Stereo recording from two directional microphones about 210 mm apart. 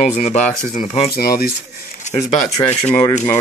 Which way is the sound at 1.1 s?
45° left (ahead or behind).